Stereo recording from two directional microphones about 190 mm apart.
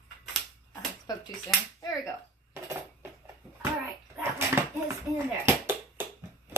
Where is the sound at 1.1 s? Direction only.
20° left (ahead or behind).